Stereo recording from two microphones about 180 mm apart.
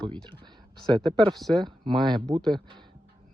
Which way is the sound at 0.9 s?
25° right (ahead or behind).